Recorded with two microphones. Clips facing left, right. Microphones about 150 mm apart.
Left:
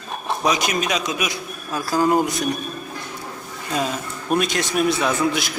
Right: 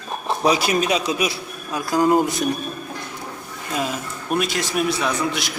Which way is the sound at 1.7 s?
20° right (ahead or behind).